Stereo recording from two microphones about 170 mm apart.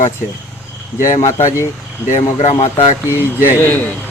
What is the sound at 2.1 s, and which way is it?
Speech, 45° left (ahead or behind).